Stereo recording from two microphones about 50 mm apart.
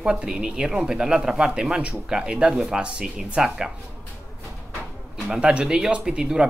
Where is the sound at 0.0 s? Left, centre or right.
Centre.